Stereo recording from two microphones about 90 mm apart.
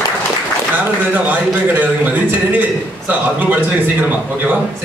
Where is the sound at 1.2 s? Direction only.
20° right (ahead or behind).